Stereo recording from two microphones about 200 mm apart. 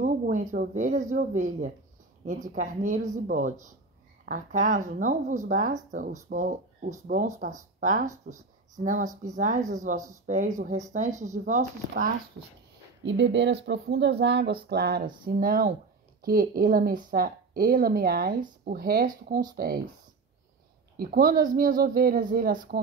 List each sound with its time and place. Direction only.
0.0 s speech: 40° right (ahead or behind)
13.0 s a woman's voice: 65° right (ahead or behind); by 19.8 s 50° right (ahead or behind)
21.0 s a woman's voice: 45° right (ahead or behind)